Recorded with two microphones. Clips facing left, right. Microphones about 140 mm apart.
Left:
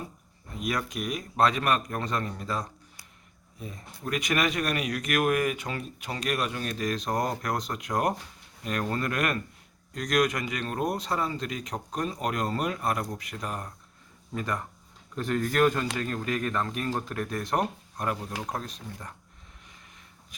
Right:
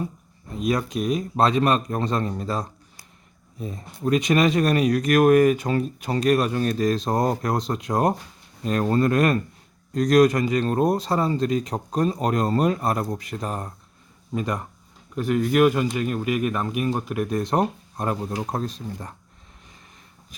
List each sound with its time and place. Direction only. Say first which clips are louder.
0.5 s speech: right 7 dB; 25° right (ahead or behind)
14.3 s speech: right 5 dB; 20° right (ahead or behind)